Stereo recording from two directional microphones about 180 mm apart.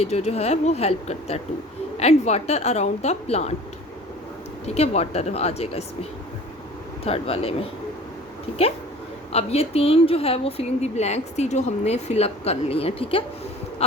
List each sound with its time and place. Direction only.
0.0 s speech: 35° left (ahead or behind)
4.6 s speech: 35° left (ahead or behind)
9.3 s speech: 35° left (ahead or behind)